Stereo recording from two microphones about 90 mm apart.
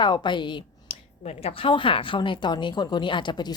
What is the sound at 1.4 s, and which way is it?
A woman's voice, 90° left.